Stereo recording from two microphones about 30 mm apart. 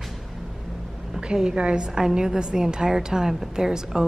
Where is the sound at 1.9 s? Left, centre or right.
Centre.